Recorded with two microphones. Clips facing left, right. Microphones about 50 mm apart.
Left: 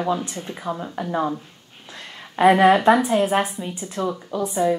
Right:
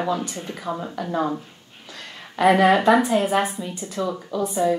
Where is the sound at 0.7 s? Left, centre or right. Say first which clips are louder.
Even; left.